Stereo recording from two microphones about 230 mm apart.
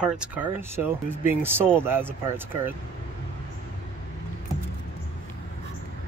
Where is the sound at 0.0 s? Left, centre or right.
Centre.